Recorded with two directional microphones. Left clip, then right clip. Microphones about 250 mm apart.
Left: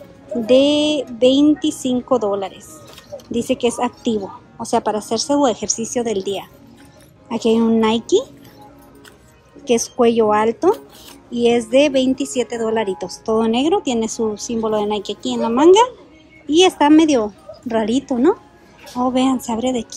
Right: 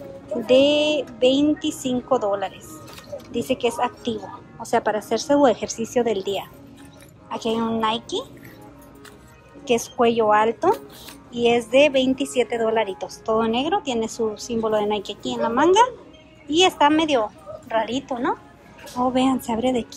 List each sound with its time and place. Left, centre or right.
0.5 s a woman's voice: centre
9.7 s a woman's voice: centre